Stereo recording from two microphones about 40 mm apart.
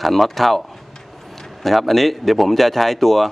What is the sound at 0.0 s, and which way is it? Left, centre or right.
A man's voice, centre.